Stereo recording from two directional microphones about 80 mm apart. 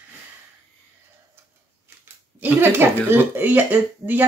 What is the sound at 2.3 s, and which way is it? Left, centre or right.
A woman's voice, right.